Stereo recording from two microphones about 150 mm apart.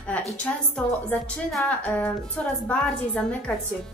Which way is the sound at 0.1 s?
10° left (ahead or behind).